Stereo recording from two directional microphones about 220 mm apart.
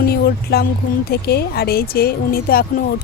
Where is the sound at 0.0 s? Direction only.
45° left (ahead or behind).